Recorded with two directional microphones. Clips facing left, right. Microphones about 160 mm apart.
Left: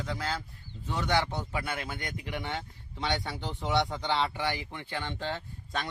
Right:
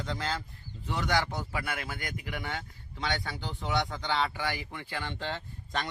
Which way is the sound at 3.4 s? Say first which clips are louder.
Left 2 dB; centre (ahead or behind).